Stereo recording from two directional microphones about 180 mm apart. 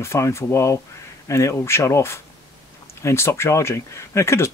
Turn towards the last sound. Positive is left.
turn(degrees=15)  # may be behind; listen again after turning